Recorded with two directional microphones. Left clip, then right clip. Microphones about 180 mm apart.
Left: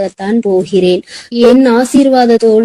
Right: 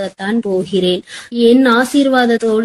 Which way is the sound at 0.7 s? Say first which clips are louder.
Left 5 dB; 15° left (ahead or behind).